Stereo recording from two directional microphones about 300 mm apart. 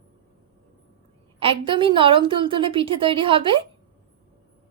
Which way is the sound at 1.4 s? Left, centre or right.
Centre.